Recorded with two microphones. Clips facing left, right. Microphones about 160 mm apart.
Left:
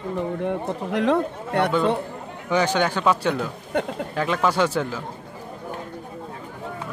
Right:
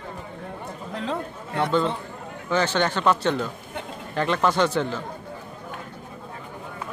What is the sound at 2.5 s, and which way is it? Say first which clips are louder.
Speech: left 2 dB; 10° left (ahead or behind).